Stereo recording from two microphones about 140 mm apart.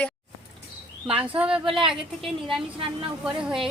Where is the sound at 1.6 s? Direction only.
35° right (ahead or behind).